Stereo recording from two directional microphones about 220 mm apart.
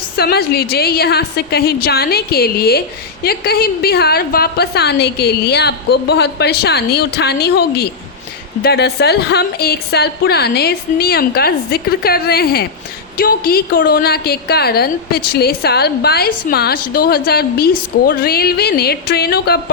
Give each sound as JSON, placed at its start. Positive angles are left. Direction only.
{"t": 0.2, "sound": "a woman's voice", "side_deg": 45}